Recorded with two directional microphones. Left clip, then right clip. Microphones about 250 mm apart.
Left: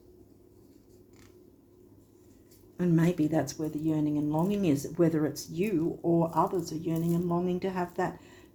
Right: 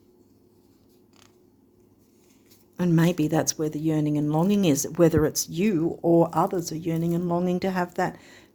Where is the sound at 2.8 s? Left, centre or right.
Right.